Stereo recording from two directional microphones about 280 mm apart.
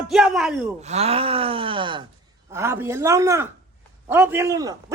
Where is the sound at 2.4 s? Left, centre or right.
Centre.